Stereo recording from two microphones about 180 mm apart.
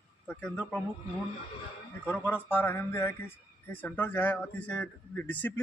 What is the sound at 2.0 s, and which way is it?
Speech, 10° left (ahead or behind).